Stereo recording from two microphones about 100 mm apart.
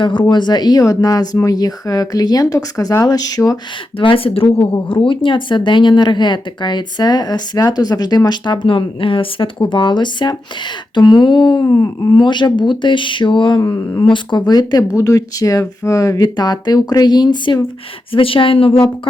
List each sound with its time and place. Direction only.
0.0 s speech: 50° left (ahead or behind)
3.9 s speech: 65° left (ahead or behind)
18.1 s speech: 65° left (ahead or behind)